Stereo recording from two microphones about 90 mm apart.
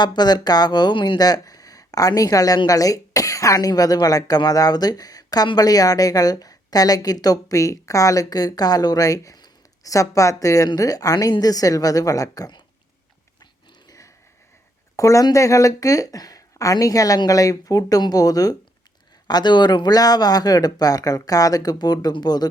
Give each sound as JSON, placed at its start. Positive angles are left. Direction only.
{"t": 0.0, "sound": "a woman's voice", "side_deg": 55}
{"t": 13.4, "sound": "a sound", "side_deg": 45}
{"t": 14.9, "sound": "a woman's voice", "side_deg": 40}
{"t": 19.3, "sound": "a woman's voice", "side_deg": 55}